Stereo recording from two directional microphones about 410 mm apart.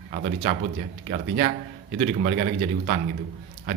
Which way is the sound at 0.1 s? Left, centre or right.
Right.